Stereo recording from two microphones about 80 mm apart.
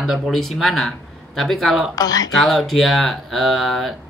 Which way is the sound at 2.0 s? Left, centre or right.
Left.